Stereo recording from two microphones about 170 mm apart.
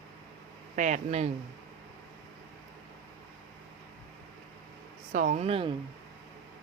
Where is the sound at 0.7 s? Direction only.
45° right (ahead or behind).